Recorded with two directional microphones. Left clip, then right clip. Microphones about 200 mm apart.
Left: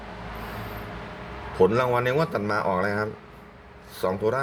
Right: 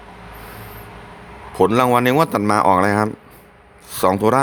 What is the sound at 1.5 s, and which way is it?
Speech, 45° right (ahead or behind).